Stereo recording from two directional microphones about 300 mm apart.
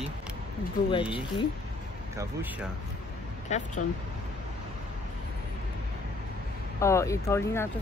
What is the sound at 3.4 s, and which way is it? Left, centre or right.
Speech, left.